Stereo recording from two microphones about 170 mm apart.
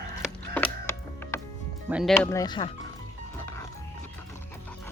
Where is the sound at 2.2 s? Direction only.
20° left (ahead or behind).